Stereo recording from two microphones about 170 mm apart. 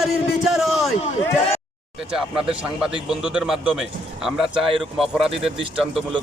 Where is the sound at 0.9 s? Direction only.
40° left (ahead or behind).